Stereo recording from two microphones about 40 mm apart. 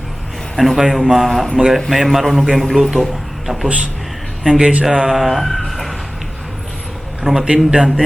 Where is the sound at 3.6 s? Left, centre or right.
Right.